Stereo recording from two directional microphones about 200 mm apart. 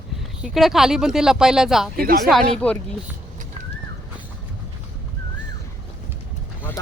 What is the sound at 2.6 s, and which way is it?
Speech, 5° left (ahead or behind).